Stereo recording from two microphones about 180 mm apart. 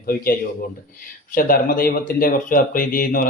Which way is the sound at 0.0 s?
55° left (ahead or behind).